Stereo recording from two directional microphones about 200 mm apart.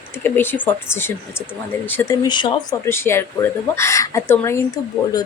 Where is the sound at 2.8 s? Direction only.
10° left (ahead or behind).